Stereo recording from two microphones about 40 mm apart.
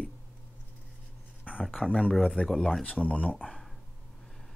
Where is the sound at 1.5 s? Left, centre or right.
Left.